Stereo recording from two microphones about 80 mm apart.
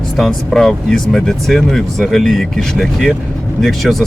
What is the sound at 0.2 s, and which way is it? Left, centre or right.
Speech, centre.